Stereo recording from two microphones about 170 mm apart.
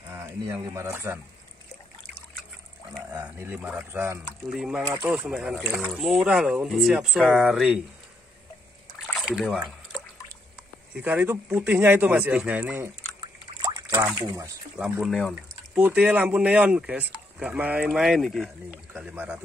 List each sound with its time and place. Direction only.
0.1 s speech: 20° right (ahead or behind)
3.3 s speech: 10° right (ahead or behind)
4.5 s speech: 5° right (ahead or behind)
4.8 s speech: 15° right (ahead or behind)
5.3 s speech: 5° right (ahead or behind)
8.9 s a sound: centre (ahead or behind)
11.0 s speech: 10° right (ahead or behind)
13.2 s a sound: 25° right (ahead or behind)
14.8 s speech: centre (ahead or behind)